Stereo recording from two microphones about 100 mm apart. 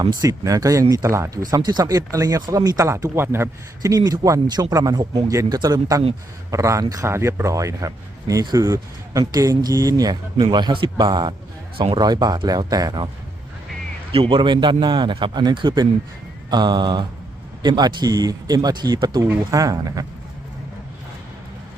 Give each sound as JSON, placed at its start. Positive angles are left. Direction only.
{"t": 0.0, "sound": "speech", "side_deg": -45}
{"t": 0.3, "sound": "speech", "side_deg": -35}
{"t": 3.9, "sound": "speech", "side_deg": -40}
{"t": 6.5, "sound": "speech", "side_deg": -30}
{"t": 14.3, "sound": "speech", "side_deg": -50}
{"t": 19.5, "sound": "speech", "side_deg": -35}